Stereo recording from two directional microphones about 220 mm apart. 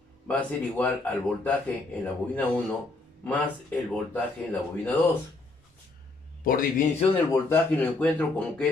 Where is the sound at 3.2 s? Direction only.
5° left (ahead or behind).